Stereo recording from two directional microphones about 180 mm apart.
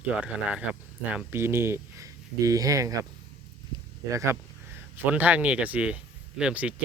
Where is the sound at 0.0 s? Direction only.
5° right (ahead or behind).